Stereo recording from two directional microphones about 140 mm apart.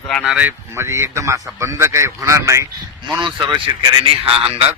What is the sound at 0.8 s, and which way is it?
A man's voice, 20° right (ahead or behind).